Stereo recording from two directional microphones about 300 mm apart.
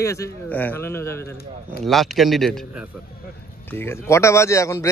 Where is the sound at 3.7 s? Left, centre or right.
Centre.